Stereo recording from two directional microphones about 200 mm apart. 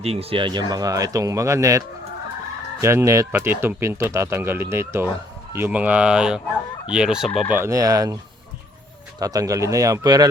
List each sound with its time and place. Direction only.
0.0 s speech: 30° right (ahead or behind); by 1.8 s 15° right (ahead or behind)
2.8 s speech: 15° right (ahead or behind)
6.9 s fowl: 5° right (ahead or behind)
7.3 s speech: 10° right (ahead or behind)